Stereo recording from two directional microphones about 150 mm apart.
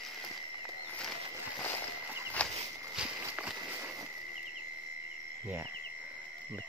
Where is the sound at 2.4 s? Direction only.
5° left (ahead or behind).